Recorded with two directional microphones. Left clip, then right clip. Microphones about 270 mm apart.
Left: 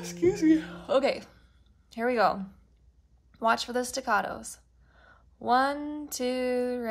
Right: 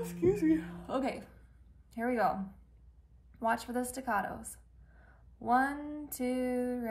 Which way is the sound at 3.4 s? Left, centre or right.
Centre.